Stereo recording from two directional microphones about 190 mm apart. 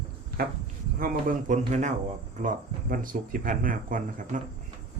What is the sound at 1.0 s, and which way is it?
A man's voice, 45° right (ahead or behind).